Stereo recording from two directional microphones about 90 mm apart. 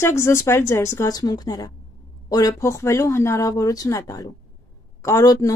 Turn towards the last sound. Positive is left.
turn(degrees=40)  # may be behind; listen again after turning